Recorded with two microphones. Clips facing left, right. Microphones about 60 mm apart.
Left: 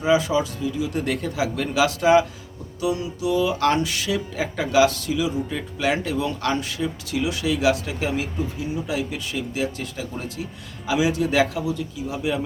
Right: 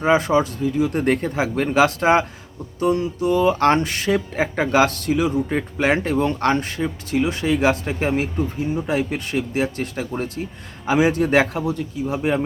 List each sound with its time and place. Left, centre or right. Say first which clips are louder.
0.0 s speech: right 3 dB; right